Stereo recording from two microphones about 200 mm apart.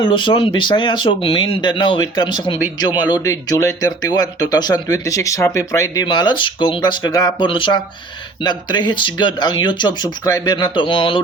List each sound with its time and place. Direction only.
0.0 s speech: 25° left (ahead or behind)